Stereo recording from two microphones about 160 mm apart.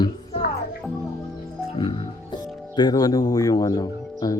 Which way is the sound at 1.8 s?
30° left (ahead or behind).